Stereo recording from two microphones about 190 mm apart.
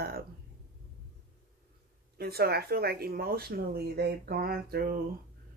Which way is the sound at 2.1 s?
55° right (ahead or behind).